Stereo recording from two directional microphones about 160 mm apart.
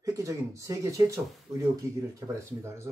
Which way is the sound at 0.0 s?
20° right (ahead or behind).